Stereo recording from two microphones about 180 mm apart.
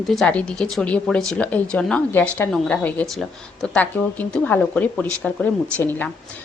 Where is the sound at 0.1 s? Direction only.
5° left (ahead or behind).